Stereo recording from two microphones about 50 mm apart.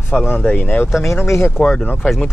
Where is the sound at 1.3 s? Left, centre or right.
Left.